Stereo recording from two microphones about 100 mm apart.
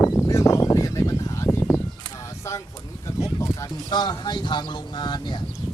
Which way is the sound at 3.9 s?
45° left (ahead or behind).